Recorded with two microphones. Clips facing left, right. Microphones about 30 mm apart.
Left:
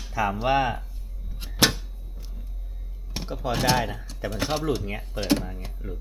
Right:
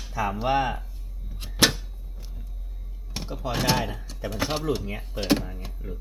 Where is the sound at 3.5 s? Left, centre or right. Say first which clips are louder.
Left 2 dB; centre.